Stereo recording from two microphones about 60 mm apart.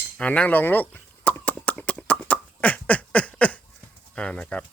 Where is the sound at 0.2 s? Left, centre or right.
Left.